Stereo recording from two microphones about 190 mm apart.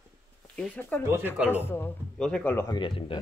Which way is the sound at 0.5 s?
10° left (ahead or behind).